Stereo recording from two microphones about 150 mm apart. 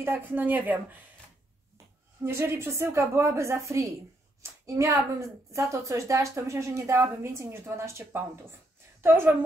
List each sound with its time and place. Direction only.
0.0 s a woman's voice: 15° right (ahead or behind)
2.2 s a woman's voice: 15° right (ahead or behind)